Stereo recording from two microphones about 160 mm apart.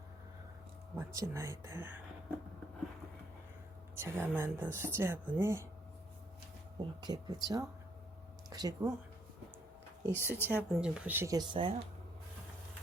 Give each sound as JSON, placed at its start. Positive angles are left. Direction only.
{"t": 0.9, "sound": "speech", "side_deg": -20}
{"t": 3.9, "sound": "speech", "side_deg": -15}
{"t": 7.0, "sound": "speech", "side_deg": -25}
{"t": 10.1, "sound": "speech", "side_deg": 15}
{"t": 10.5, "sound": "speech", "side_deg": -5}
{"t": 11.3, "sound": "speech", "side_deg": -30}